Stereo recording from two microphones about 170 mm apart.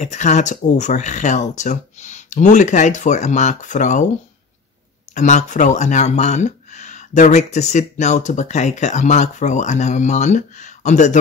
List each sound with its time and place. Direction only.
0.0 s speech: 45° left (ahead or behind)
5.1 s speech: 45° left (ahead or behind)